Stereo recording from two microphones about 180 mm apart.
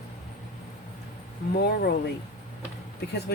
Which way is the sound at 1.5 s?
60° left (ahead or behind).